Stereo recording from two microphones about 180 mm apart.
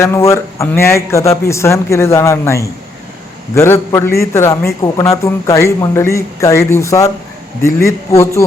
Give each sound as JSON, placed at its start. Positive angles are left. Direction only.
{"t": 0.0, "sound": "a man's voice", "side_deg": 15}